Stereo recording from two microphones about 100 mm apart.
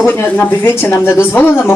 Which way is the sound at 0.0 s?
20° left (ahead or behind).